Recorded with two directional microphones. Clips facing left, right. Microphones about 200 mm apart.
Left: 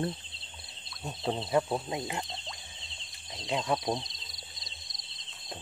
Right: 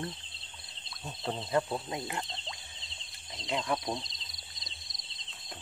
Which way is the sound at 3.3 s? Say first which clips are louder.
Left 2 dB; 20° left (ahead or behind).